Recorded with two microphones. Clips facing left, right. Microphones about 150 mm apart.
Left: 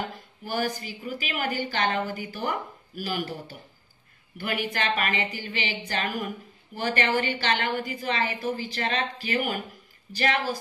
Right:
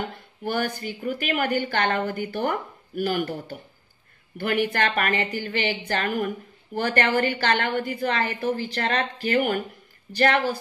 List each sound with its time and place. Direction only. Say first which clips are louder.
0.4 s a woman's voice: right 2 dB; 60° right (ahead or behind)